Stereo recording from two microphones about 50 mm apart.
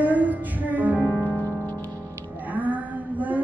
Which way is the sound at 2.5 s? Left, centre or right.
Right.